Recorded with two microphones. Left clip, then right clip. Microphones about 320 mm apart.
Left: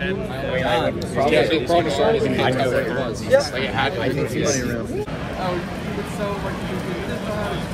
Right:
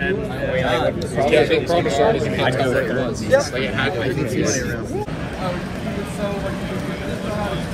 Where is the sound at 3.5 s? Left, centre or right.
Left.